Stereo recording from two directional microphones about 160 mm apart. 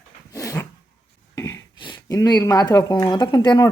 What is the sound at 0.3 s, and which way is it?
Dog, 20° left (ahead or behind).